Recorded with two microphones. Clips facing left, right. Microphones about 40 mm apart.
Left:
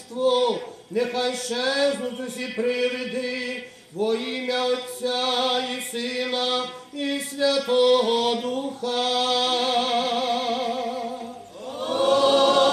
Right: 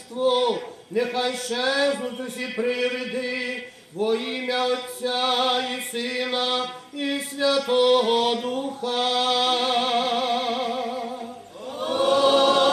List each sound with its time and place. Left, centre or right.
0.2 s a man's voice: centre
11.8 s choir: centre